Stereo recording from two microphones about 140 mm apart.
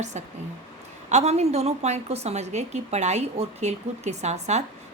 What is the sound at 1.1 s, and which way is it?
A woman's voice, 50° right (ahead or behind).